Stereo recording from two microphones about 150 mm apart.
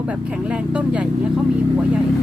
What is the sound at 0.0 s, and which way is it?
Speech, 10° right (ahead or behind).